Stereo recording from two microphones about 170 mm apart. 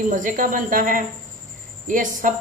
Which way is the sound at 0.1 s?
50° right (ahead or behind).